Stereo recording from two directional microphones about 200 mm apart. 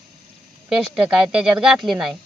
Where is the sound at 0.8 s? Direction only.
5° right (ahead or behind).